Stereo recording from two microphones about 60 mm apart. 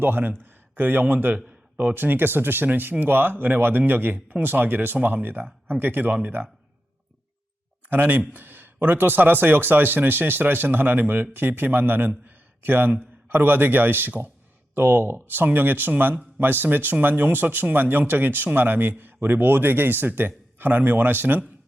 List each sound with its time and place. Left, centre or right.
0.0 s a man's voice: right
7.9 s speech: right